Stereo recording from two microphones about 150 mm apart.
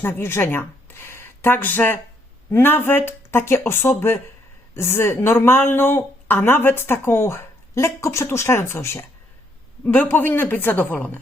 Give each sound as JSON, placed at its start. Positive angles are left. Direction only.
{"t": 0.0, "sound": "speech", "side_deg": 15}